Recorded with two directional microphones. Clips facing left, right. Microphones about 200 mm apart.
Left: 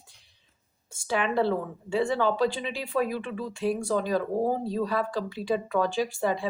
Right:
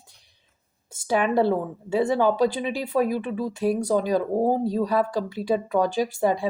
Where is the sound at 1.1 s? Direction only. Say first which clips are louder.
Right 5 dB; 45° right (ahead or behind).